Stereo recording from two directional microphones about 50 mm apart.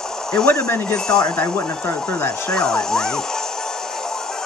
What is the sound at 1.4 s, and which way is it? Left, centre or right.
Speech, left.